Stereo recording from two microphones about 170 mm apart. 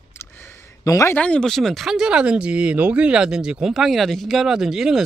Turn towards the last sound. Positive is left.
turn(degrees=0)  # may be behind; listen again after turning